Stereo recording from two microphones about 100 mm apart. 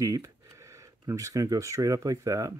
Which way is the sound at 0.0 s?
30° right (ahead or behind).